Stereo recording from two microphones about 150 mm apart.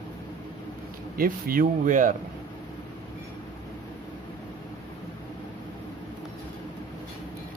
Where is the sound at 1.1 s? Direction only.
75° right (ahead or behind); by 2.2 s 60° right (ahead or behind).